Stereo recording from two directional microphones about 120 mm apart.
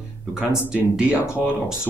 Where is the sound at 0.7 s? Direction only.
10° right (ahead or behind).